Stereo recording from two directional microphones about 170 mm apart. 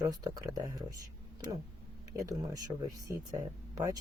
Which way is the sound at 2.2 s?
20° right (ahead or behind).